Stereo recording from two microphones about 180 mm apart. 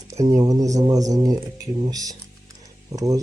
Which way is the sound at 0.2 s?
40° right (ahead or behind).